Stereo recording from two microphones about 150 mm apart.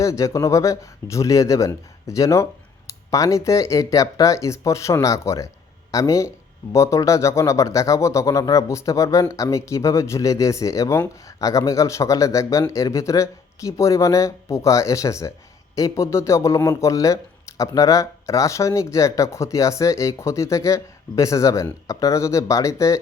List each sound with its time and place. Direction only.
0.0 s speech: 20° left (ahead or behind)